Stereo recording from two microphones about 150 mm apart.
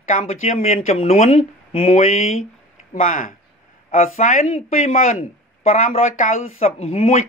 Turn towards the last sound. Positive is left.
turn(degrees=50)  # may be behind; listen again after turning